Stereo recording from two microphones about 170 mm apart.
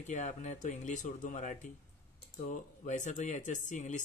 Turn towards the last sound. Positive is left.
turn(degrees=45)  # may be behind; listen again after turning